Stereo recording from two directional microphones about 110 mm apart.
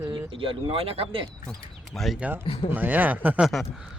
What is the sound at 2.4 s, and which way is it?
Speech, 55° left (ahead or behind).